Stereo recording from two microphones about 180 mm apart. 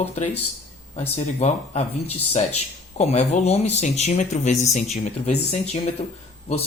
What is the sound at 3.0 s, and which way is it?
Speech, 40° left (ahead or behind).